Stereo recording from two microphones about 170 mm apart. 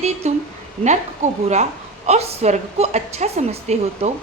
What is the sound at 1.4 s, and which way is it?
A woman's voice, 40° right (ahead or behind).